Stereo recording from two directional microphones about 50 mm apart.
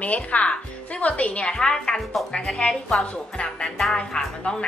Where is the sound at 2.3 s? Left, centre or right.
Centre.